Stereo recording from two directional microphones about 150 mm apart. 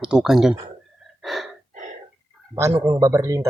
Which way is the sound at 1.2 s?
Centre (ahead or behind).